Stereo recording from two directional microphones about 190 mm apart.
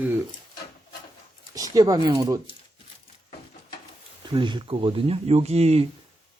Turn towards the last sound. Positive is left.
turn(degrees=-35)  # may be behind; listen again after turning